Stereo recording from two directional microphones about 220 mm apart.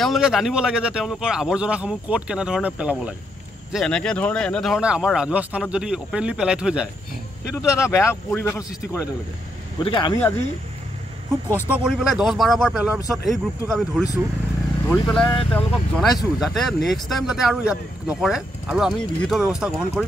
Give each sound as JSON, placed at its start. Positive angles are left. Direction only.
{"t": 0.0, "sound": "speech", "side_deg": 0}
{"t": 7.7, "sound": "speech", "side_deg": 10}
{"t": 10.1, "sound": "speech", "side_deg": 10}
{"t": 11.6, "sound": "speech", "side_deg": -5}